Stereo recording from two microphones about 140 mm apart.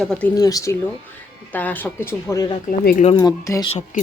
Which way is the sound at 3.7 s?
55° left (ahead or behind).